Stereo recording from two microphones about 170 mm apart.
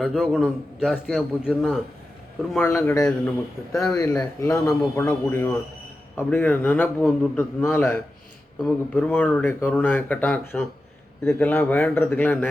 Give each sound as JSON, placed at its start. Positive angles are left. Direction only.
{"t": 0.0, "sound": "a man's voice", "side_deg": 0}
{"t": 2.6, "sound": "speech", "side_deg": 15}